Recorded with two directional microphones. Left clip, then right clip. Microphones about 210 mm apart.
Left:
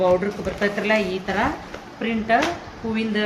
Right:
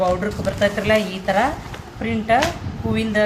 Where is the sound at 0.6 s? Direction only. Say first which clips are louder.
Right 3 dB; 50° right (ahead or behind).